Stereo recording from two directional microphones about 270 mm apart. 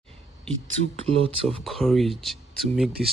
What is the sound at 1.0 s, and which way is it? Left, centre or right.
Speech, right.